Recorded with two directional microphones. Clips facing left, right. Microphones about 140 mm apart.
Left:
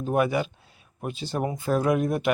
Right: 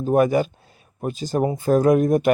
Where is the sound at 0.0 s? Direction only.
40° right (ahead or behind).